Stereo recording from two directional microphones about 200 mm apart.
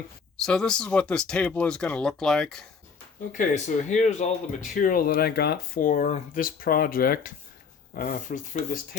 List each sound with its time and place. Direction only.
0.4 s speech: 5° left (ahead or behind)
3.3 s speech: 35° left (ahead or behind)